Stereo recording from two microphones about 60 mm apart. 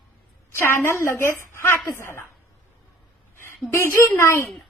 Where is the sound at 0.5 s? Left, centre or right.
Left.